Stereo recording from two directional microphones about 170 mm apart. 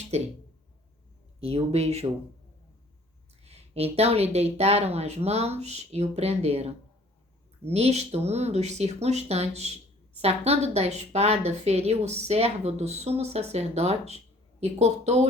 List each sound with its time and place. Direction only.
0.1 s a woman's voice: 40° right (ahead or behind)
1.4 s a woman's voice: 35° right (ahead or behind)
3.4 s a woman's voice: 35° right (ahead or behind)